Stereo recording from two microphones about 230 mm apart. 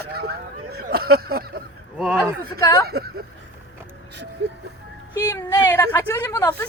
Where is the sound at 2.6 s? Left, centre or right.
Centre.